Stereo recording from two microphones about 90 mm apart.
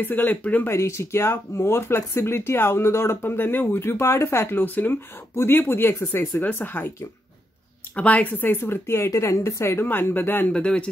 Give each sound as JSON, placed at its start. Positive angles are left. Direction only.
{"t": 0.0, "sound": "speech", "side_deg": 20}
{"t": 0.7, "sound": "speech", "side_deg": 30}
{"t": 7.9, "sound": "speech", "side_deg": 15}